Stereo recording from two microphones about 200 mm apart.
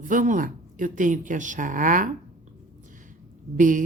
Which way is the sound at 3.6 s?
40° right (ahead or behind).